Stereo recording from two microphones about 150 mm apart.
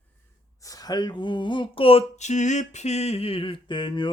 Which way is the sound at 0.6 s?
25° left (ahead or behind).